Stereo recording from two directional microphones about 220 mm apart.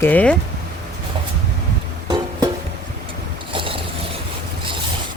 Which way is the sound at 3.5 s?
25° right (ahead or behind).